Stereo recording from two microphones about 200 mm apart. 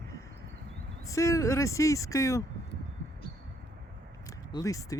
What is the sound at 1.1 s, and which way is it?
Speech, 15° left (ahead or behind).